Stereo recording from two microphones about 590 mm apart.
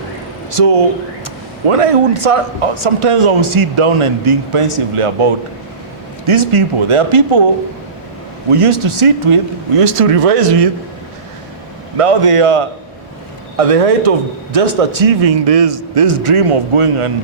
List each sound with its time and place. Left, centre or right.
0.5 s a man's voice: right
8.4 s a man's voice: right
11.9 s a man's voice: right
13.6 s a man's voice: right